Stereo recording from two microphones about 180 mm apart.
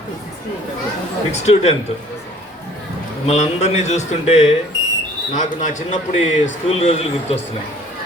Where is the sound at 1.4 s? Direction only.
35° left (ahead or behind).